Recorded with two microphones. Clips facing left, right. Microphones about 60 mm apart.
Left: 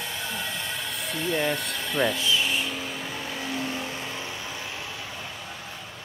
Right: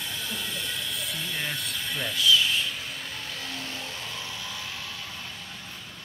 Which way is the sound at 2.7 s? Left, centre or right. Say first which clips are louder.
Left 4 dB; centre.